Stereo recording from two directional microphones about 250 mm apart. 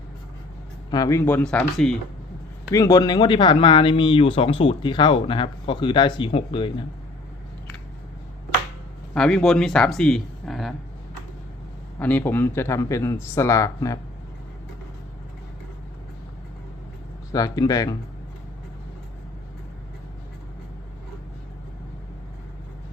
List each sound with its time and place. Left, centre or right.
0.9 s a man's voice: centre
2.7 s speech: centre
9.1 s speech: centre
11.9 s a man's voice: centre
17.3 s a man's voice: centre